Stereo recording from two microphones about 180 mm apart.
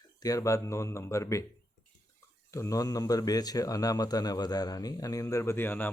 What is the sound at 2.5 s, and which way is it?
Speech, 15° left (ahead or behind).